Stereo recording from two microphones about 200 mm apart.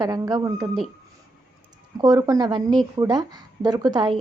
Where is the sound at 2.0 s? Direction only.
20° right (ahead or behind).